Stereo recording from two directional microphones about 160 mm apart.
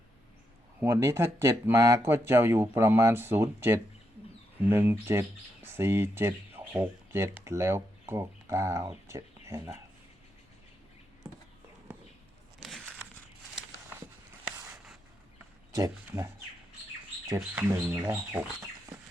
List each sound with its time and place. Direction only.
0.8 s speech: 20° right (ahead or behind)
12.6 s a sound: 5° left (ahead or behind)
15.7 s speech: 20° right (ahead or behind)